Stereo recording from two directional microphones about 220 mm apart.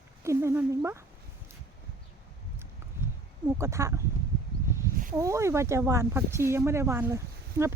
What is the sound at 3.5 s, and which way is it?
Speech, 10° right (ahead or behind).